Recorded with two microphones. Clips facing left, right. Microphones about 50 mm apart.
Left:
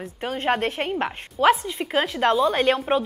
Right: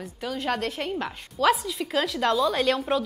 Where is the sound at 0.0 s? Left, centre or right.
Left.